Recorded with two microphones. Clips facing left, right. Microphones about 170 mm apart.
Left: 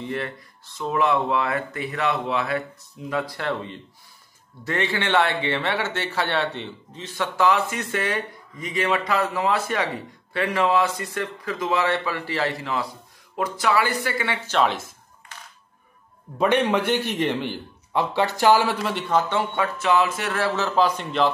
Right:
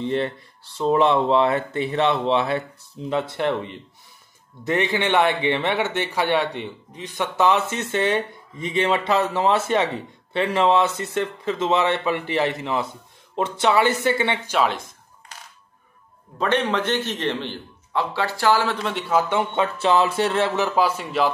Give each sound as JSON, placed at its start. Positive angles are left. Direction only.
{"t": 0.0, "sound": "a man's voice", "side_deg": -30}
{"t": 14.5, "sound": "speech", "side_deg": 0}
{"t": 16.3, "sound": "a man's voice", "side_deg": 10}
{"t": 18.9, "sound": "a man's voice", "side_deg": -5}
{"t": 19.5, "sound": "a man's voice", "side_deg": -25}